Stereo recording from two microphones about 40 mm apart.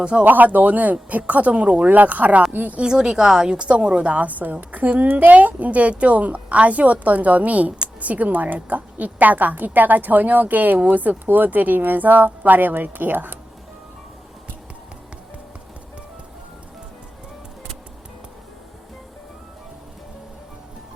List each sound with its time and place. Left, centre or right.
0.0 s speech: right
0.3 s a child's voice: right
1.9 s a woman's voice: right
2.7 s a woman's voice: right
3.6 s a child's voice: right